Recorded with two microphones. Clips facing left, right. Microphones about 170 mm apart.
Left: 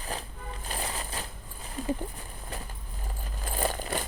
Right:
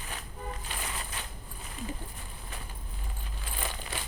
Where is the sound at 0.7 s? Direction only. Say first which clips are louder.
Left 4 dB; 35° left (ahead or behind).